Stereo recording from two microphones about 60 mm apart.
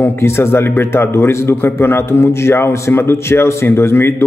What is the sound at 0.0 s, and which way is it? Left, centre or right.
A man's voice, left.